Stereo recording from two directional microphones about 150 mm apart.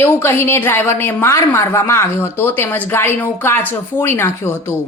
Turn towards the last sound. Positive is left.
turn(degrees=15)  # may be behind; listen again after turning